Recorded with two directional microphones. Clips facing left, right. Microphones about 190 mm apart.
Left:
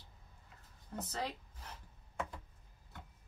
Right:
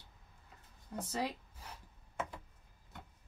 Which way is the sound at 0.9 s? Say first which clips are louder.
Right 3 dB; 10° right (ahead or behind).